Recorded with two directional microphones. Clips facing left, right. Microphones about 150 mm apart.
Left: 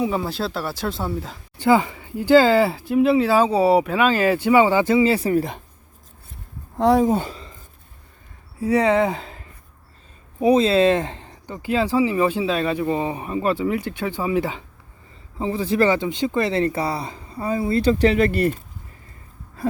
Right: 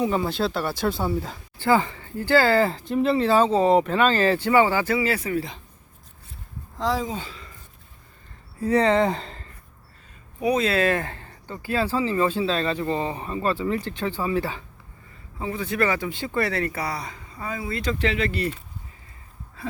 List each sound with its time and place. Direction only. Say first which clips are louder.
0.0 s speech: even; centre (ahead or behind)
1.5 s speech: left 3 dB; 15° left (ahead or behind)
5.3 s speech: left 6 dB; 50° left (ahead or behind)
6.7 s speech: left 9 dB; 60° left (ahead or behind)
8.5 s speech: left 2 dB; 10° left (ahead or behind)
10.4 s speech: left 6 dB; 25° left (ahead or behind)
15.4 s speech: left 5 dB; 30° left (ahead or behind); by 18.6 s 50° left (ahead or behind)